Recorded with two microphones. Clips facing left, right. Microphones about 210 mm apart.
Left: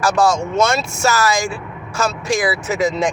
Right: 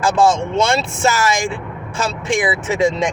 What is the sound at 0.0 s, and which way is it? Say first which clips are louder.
Speech: right 1 dB; 30° right (ahead or behind).